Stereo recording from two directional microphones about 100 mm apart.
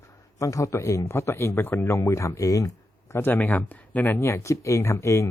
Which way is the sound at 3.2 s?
20° left (ahead or behind).